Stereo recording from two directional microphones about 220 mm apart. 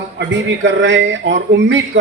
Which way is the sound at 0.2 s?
55° right (ahead or behind).